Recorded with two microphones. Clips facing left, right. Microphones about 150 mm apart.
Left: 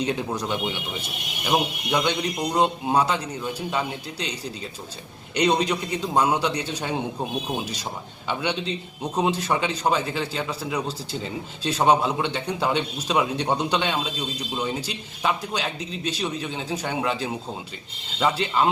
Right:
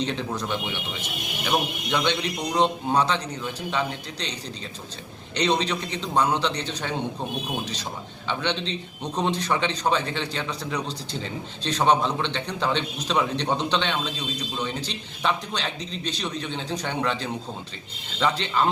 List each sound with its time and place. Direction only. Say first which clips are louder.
0.0 s a man's voice: left 2 dB; 10° left (ahead or behind)